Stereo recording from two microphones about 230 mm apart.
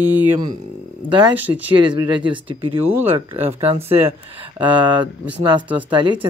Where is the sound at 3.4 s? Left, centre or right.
Centre.